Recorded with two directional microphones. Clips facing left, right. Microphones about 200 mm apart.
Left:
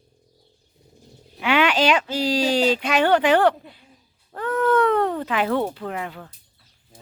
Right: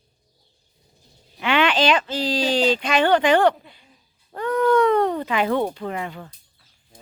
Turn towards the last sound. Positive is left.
turn(degrees=0)  # may be behind; listen again after turning